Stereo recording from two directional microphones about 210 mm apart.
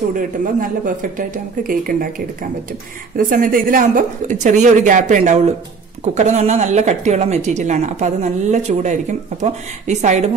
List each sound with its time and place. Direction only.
0.1 s a woman's voice: 40° right (ahead or behind)